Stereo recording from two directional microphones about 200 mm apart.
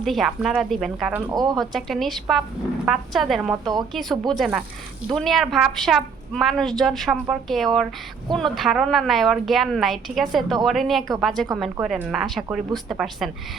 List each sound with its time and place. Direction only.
0.0 s a woman's voice: centre (ahead or behind)
1.3 s speech: 20° right (ahead or behind)
1.5 s a woman's voice: centre (ahead or behind)